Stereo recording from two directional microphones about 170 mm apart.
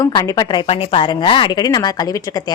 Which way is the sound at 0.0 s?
20° left (ahead or behind).